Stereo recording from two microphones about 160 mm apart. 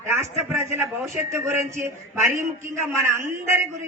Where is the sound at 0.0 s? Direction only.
15° right (ahead or behind).